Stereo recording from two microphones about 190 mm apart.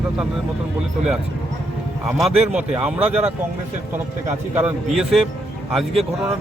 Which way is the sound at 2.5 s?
5° right (ahead or behind).